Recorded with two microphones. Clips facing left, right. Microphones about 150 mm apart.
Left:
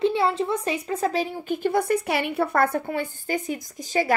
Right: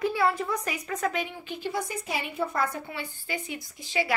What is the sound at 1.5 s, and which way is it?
A woman's voice, 55° left (ahead or behind).